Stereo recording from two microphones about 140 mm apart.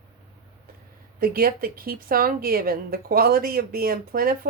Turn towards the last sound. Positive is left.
turn(degrees=-90)